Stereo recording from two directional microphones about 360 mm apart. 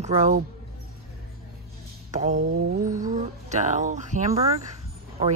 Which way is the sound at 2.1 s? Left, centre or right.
Centre.